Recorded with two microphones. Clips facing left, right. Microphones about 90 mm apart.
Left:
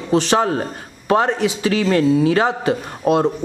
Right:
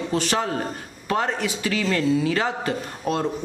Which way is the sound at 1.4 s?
25° left (ahead or behind).